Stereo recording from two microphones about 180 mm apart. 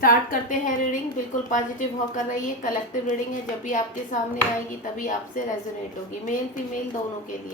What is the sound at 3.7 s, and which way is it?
A woman's voice, 45° left (ahead or behind).